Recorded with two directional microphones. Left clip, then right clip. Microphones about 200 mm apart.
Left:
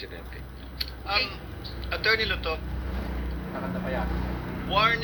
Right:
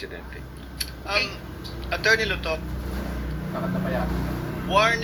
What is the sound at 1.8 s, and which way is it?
Speech, 30° right (ahead or behind).